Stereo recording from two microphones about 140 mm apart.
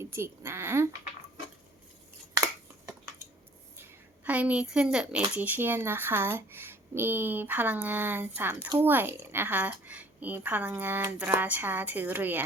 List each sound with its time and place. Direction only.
0.0 s a woman's voice: 20° right (ahead or behind)
2.3 s a sound: 20° right (ahead or behind)
3.8 s a woman's voice: 10° right (ahead or behind)